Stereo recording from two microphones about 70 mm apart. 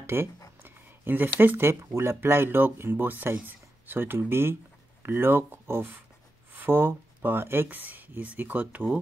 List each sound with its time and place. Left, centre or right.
0.0 s speech: right